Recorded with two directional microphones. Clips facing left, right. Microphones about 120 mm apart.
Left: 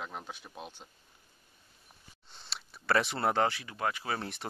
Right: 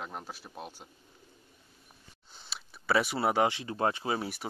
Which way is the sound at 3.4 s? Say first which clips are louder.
Right 3 dB; 25° right (ahead or behind).